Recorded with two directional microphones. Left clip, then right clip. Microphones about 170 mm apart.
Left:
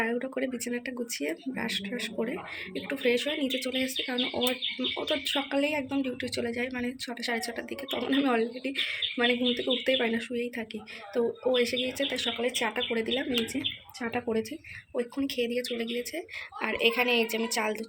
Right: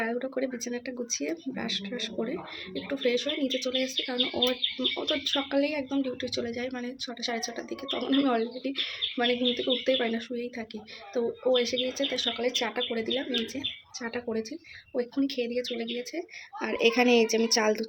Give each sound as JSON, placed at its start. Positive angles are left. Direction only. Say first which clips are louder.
{"t": 0.0, "sound": "speech", "louder": "even", "side_deg": -5}
{"t": 14.0, "sound": "speech", "louder": "left 2 dB", "side_deg": 15}
{"t": 14.9, "sound": "speech", "louder": "right 1 dB", "side_deg": -15}
{"t": 16.7, "sound": "a woman's voice", "louder": "right 3 dB", "side_deg": -60}